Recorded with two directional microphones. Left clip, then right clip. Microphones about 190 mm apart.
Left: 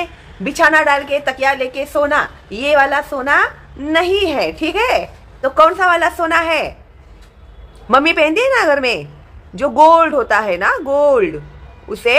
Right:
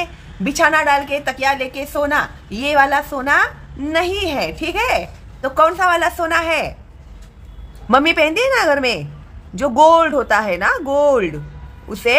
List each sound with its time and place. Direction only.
0.0 s a woman's voice: 20° right (ahead or behind)
7.9 s speech: 20° right (ahead or behind)